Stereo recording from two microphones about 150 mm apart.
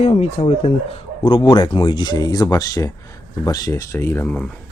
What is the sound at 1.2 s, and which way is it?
Speech, 30° left (ahead or behind).